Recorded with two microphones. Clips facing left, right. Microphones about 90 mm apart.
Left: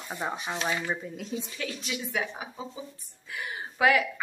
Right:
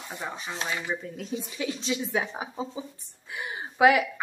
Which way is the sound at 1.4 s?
20° right (ahead or behind).